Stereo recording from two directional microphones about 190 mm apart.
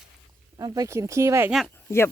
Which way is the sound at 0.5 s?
20° right (ahead or behind).